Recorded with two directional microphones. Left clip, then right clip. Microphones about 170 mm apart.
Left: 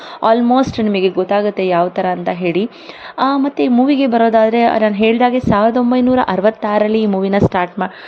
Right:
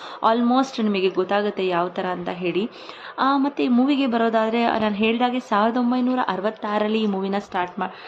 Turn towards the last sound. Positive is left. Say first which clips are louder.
# left 10 dB
turn(degrees=40)  # may be behind; listen again after turning